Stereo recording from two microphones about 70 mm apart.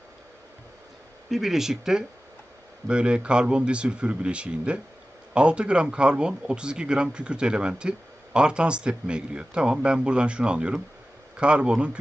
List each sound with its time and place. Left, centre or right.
1.3 s speech: centre